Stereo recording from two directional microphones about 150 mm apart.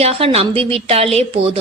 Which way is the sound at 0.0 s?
40° right (ahead or behind).